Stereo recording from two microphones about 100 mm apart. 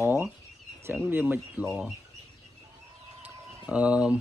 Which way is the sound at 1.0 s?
15° right (ahead or behind).